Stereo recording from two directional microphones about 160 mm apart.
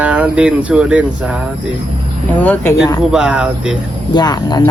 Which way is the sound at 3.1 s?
5° right (ahead or behind).